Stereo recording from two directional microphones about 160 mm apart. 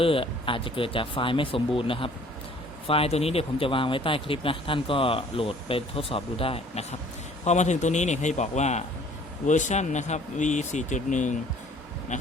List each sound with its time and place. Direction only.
0.0 s speech: 35° left (ahead or behind); by 11.3 s 50° left (ahead or behind)